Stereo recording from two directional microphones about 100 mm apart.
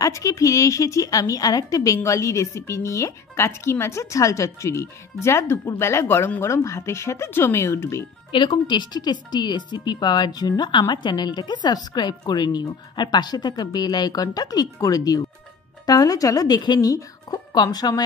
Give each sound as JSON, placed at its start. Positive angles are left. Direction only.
{"t": 0.0, "sound": "speech", "side_deg": 35}
{"t": 8.6, "sound": "speech", "side_deg": 45}